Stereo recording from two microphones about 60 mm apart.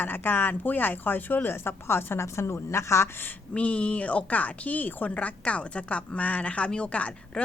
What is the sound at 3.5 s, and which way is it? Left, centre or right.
A woman's voice, left.